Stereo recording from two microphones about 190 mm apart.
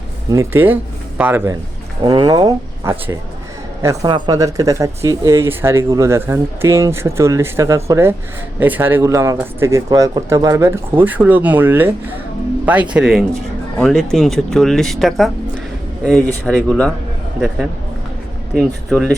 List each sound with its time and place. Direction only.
0.3 s speech: 15° right (ahead or behind)
2.0 s speech: 25° right (ahead or behind); by 16.9 s 5° left (ahead or behind)
18.5 s speech: centre (ahead or behind)